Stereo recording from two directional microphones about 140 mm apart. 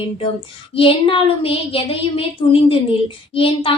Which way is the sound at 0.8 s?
40° left (ahead or behind).